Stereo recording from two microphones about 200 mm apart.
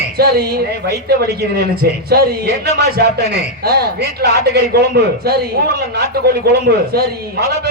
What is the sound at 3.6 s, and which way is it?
A man's voice, 50° right (ahead or behind).